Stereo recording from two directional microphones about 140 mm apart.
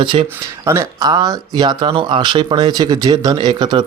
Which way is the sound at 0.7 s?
25° right (ahead or behind).